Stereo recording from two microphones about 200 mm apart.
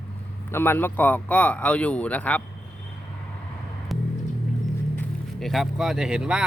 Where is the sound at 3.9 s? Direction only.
Centre (ahead or behind).